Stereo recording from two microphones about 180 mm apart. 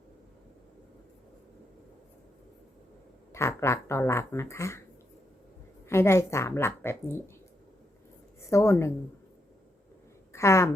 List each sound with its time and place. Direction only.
3.3 s speech: 15° left (ahead or behind)
5.9 s speech: 15° left (ahead or behind)
8.4 s speech: 15° left (ahead or behind)
10.3 s a sound: 15° left (ahead or behind)